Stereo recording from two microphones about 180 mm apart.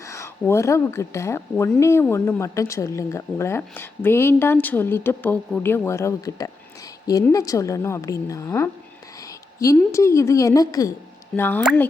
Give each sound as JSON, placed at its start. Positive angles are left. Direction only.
{"t": 0.0, "sound": "speech", "side_deg": 15}
{"t": 9.7, "sound": "speech", "side_deg": 15}